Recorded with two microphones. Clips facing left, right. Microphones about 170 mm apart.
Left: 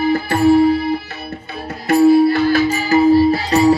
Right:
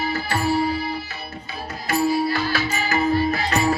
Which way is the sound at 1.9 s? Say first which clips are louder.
Left 10 dB; 60° left (ahead or behind).